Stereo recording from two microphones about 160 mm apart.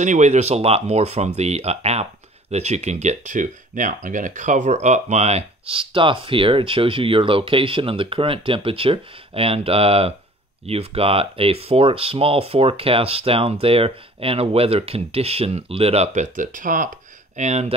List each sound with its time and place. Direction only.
0.0 s speech: 50° right (ahead or behind)